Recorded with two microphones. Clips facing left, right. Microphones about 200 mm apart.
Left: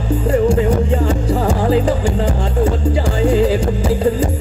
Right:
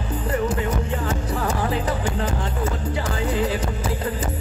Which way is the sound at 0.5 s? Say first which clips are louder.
Left 10 dB; 30° left (ahead or behind).